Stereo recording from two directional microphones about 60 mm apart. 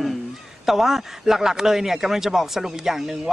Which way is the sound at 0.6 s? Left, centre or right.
Centre.